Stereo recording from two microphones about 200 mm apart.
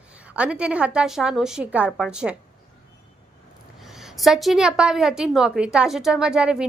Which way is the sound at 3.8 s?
Centre (ahead or behind).